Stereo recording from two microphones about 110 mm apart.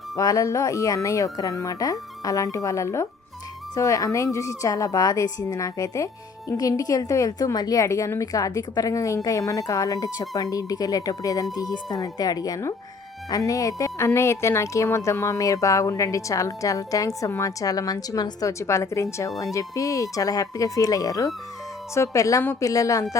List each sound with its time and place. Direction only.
0.2 s a woman's voice: 30° left (ahead or behind)